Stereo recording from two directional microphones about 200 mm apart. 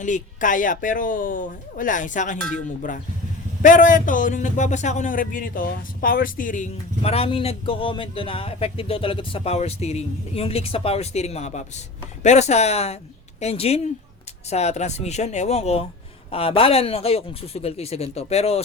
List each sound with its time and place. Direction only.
0.0 s a man's voice: 40° left (ahead or behind)
3.6 s a man's voice: 40° left (ahead or behind)